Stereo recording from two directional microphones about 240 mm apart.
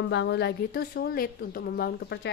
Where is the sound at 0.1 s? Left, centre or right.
Left.